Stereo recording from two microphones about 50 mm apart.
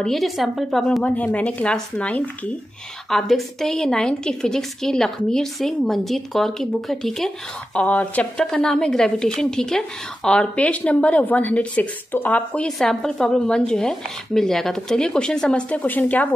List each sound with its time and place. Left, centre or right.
0.1 s speech: centre
1.0 s a woman's voice: left
3.1 s a woman's voice: centre
7.7 s a woman's voice: left
8.5 s a woman's voice: centre
12.6 s a woman's voice: centre
15.7 s speech: left